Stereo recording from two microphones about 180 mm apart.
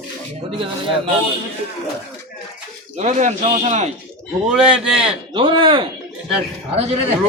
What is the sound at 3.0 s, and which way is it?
Speech, 40° right (ahead or behind).